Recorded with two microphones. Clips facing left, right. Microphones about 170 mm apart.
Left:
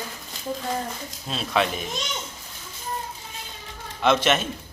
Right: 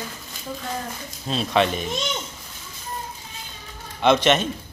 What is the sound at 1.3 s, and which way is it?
Speech, centre (ahead or behind).